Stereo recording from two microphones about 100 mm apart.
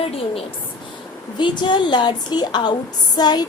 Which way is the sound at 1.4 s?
50° left (ahead or behind).